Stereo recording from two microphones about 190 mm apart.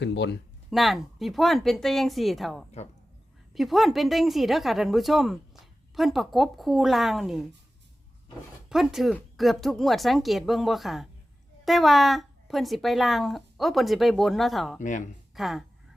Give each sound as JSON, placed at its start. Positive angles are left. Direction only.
{"t": 0.0, "sound": "speech", "side_deg": 65}
{"t": 0.7, "sound": "speech", "side_deg": 0}
{"t": 8.7, "sound": "speech", "side_deg": 0}
{"t": 14.8, "sound": "speech", "side_deg": 40}
{"t": 15.4, "sound": "speech", "side_deg": 0}